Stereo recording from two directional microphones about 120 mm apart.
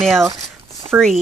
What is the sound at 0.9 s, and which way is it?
Speech, 20° right (ahead or behind).